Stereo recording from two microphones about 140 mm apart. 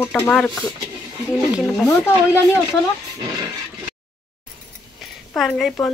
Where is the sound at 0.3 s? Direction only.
5° left (ahead or behind).